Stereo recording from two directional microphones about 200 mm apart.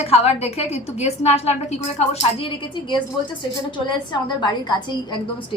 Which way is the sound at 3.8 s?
20° left (ahead or behind).